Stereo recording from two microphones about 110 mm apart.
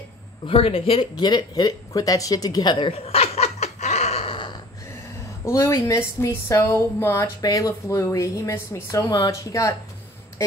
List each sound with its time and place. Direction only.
0.5 s speech: 60° left (ahead or behind)
1.1 s a sound: 40° left (ahead or behind); by 4.4 s 70° left (ahead or behind)
5.4 s a woman's voice: 25° left (ahead or behind)